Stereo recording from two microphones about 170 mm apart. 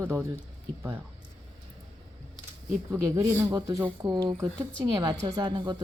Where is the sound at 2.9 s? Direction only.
15° right (ahead or behind).